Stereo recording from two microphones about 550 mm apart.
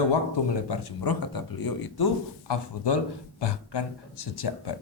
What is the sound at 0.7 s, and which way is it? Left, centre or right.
Speech, left.